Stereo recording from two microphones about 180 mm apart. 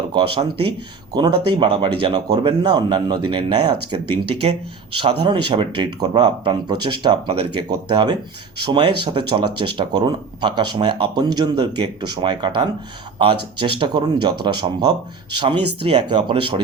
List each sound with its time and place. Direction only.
0.1 s speech: 25° right (ahead or behind)
4.9 s speech: 25° right (ahead or behind)